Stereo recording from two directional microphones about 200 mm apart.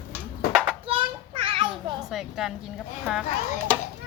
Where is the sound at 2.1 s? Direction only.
Centre (ahead or behind).